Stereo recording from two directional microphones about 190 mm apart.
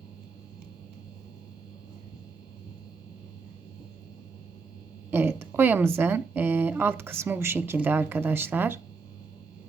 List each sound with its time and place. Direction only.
5.1 s a woman's voice: 10° right (ahead or behind)